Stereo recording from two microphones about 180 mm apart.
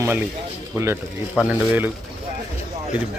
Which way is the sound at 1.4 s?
10° right (ahead or behind).